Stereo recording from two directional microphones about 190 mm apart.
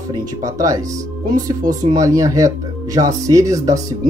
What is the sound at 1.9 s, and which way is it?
Speech, 15° right (ahead or behind).